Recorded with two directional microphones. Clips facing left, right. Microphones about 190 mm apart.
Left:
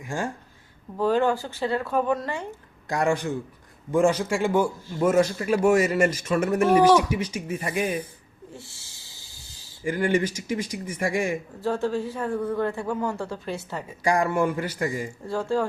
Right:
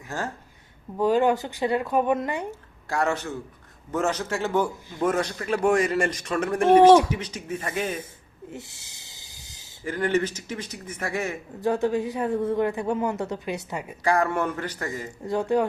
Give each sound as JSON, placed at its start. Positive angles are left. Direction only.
{"t": 0.9, "sound": "speech", "side_deg": -15}
{"t": 2.9, "sound": "a man's voice", "side_deg": 15}
{"t": 8.4, "sound": "owl", "side_deg": -20}
{"t": 9.8, "sound": "a man's voice", "side_deg": 10}
{"t": 11.6, "sound": "speech", "side_deg": -15}
{"t": 14.0, "sound": "a man's voice", "side_deg": 15}
{"t": 15.3, "sound": "speech", "side_deg": -20}